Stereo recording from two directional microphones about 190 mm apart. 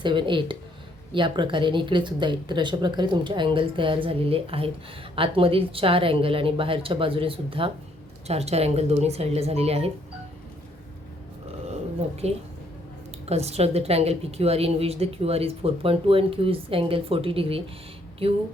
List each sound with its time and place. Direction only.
0.0 s a woman's voice: 25° right (ahead or behind)
11.7 s a sound: 35° right (ahead or behind)
13.2 s a woman's voice: 35° right (ahead or behind)